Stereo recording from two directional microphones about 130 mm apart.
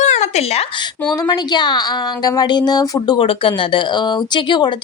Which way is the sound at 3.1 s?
40° left (ahead or behind).